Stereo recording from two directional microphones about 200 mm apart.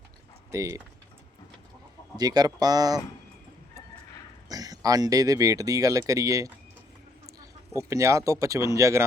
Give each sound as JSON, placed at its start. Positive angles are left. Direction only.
{"t": 0.5, "sound": "speech", "side_deg": -15}
{"t": 2.1, "sound": "speech", "side_deg": -20}
{"t": 4.4, "sound": "speech", "side_deg": -20}
{"t": 7.7, "sound": "speech", "side_deg": -15}